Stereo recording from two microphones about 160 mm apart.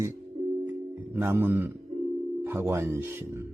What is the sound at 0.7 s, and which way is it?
Speech, 15° right (ahead or behind).